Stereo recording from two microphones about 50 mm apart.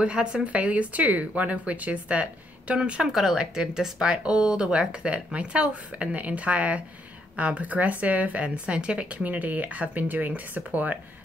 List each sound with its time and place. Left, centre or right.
0.0 s speech: centre
2.8 s speech: centre; by 11.0 s right